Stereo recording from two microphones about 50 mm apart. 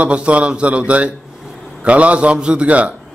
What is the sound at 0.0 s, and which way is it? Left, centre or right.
A man's voice, right.